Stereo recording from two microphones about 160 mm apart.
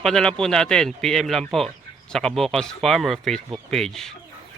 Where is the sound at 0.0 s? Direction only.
5° left (ahead or behind).